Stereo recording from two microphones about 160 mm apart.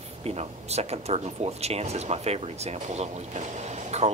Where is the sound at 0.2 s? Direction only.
40° right (ahead or behind).